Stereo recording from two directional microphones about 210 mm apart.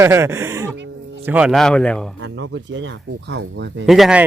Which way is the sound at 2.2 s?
60° right (ahead or behind).